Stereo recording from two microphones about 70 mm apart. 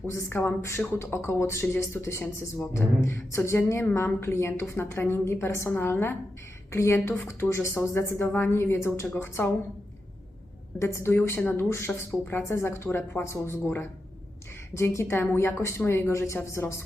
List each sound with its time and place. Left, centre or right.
0.1 s speech: left
10.8 s speech: left